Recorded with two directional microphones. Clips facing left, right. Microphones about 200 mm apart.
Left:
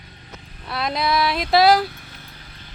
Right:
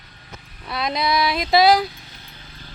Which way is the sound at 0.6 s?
5° left (ahead or behind).